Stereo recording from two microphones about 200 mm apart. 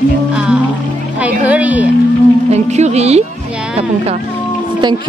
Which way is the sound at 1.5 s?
5° right (ahead or behind).